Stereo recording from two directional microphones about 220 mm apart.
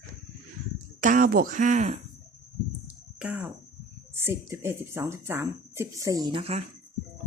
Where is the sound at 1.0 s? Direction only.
35° right (ahead or behind).